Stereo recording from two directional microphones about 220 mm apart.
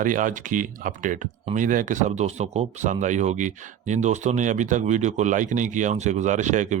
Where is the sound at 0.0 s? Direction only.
35° right (ahead or behind).